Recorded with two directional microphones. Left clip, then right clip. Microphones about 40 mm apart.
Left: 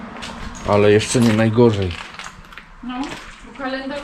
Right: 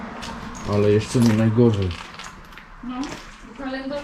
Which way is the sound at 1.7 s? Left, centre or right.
Centre.